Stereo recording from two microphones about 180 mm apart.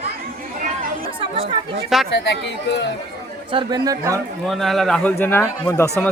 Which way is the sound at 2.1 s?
70° left (ahead or behind).